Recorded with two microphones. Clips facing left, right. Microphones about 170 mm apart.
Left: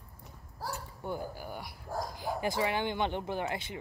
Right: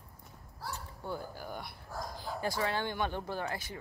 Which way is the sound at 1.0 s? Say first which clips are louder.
Left 2 dB; 10° left (ahead or behind).